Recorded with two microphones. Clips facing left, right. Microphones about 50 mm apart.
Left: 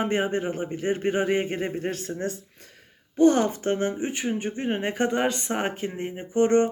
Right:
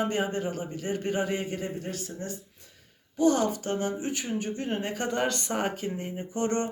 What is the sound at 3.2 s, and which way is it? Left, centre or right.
Speech, left.